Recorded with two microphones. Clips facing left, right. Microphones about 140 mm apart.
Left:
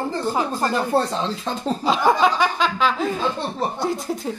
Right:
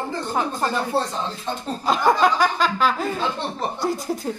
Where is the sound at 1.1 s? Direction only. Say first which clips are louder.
Left 4 dB; 90° left.